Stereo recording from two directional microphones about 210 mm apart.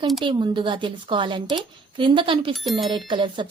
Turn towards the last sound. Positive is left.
turn(degrees=-20)  # may be behind; listen again after turning